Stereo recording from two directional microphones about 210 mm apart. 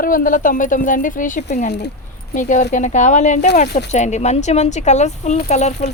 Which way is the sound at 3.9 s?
35° left (ahead or behind).